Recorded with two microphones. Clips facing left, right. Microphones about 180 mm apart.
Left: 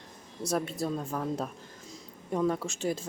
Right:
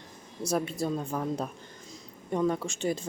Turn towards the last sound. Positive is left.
turn(degrees=0)  # may be behind; listen again after turning